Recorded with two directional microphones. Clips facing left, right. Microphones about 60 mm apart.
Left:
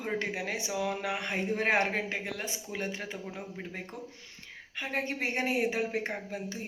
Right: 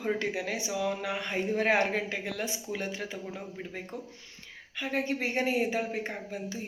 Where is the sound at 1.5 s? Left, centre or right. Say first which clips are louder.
Right 2 dB; left.